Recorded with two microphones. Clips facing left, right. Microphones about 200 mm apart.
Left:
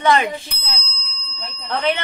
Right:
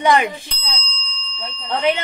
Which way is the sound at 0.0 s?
15° right (ahead or behind).